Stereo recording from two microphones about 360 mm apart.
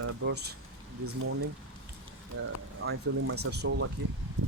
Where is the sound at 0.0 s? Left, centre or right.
Right.